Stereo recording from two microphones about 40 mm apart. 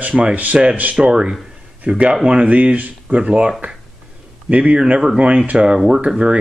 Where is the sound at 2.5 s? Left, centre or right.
Right.